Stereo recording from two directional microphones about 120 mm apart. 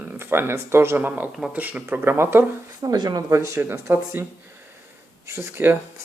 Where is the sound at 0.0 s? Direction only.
20° right (ahead or behind).